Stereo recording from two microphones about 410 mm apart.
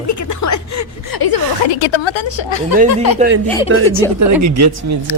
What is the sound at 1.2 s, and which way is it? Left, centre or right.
A woman's voice, left.